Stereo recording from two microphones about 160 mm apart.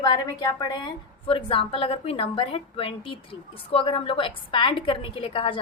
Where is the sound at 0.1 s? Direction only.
25° left (ahead or behind).